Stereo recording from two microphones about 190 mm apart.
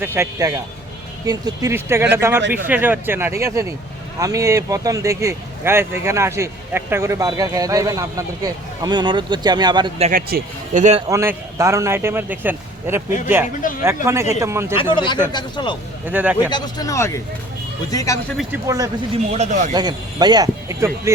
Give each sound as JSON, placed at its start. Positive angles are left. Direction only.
{"t": 0.0, "sound": "speech", "side_deg": -15}
{"t": 10.1, "sound": "speech", "side_deg": -50}
{"t": 11.1, "sound": "speech", "side_deg": -15}
{"t": 13.6, "sound": "speech", "side_deg": 45}
{"t": 13.8, "sound": "speech", "side_deg": -15}
{"t": 14.9, "sound": "speech", "side_deg": 25}
{"t": 16.0, "sound": "speech", "side_deg": -10}
{"t": 16.5, "sound": "speech", "side_deg": 20}
{"t": 18.5, "sound": "speech", "side_deg": -20}
{"t": 19.3, "sound": "speech", "side_deg": -35}
{"t": 19.7, "sound": "speech", "side_deg": -20}